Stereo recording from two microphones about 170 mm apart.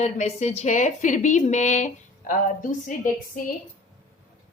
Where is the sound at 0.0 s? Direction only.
40° left (ahead or behind).